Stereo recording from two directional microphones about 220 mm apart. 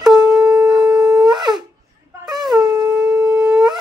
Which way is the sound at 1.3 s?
20° right (ahead or behind).